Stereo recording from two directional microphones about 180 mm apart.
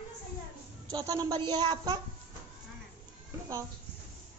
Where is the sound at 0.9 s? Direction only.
20° right (ahead or behind).